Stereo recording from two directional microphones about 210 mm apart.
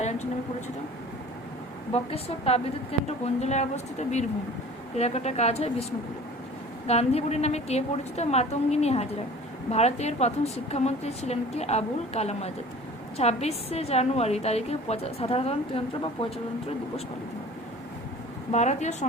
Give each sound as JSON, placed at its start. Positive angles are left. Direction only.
{"t": 0.0, "sound": "a sound", "side_deg": 30}
{"t": 1.9, "sound": "a woman's voice", "side_deg": 30}
{"t": 6.8, "sound": "a woman's voice", "side_deg": 30}
{"t": 18.5, "sound": "a woman's voice", "side_deg": 35}